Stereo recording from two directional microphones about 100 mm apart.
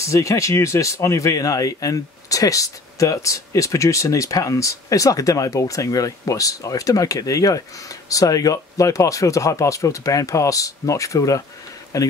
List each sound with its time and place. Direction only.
0.0 s speech: 30° left (ahead or behind)